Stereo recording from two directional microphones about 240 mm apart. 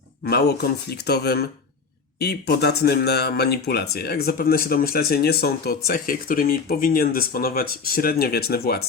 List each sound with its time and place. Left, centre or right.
0.3 s speech: left